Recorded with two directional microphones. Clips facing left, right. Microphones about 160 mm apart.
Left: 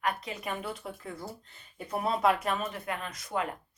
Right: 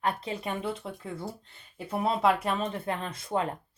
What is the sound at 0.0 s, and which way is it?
Speech, 30° right (ahead or behind).